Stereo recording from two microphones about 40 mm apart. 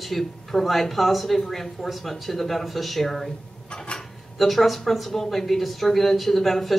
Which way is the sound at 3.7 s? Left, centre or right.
Left.